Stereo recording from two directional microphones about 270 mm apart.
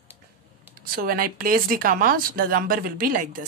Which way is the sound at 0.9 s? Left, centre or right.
Right.